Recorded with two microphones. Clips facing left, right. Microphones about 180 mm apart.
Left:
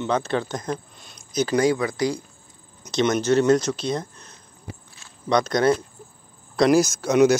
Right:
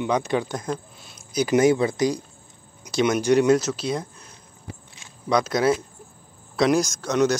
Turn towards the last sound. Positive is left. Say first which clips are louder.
# left 4 dB
turn(degrees=10)  # may be behind; listen again after turning